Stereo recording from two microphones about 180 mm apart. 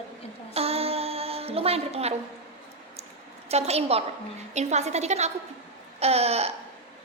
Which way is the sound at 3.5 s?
35° right (ahead or behind).